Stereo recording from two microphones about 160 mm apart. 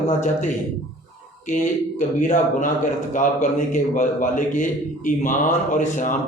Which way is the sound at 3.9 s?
55° left (ahead or behind).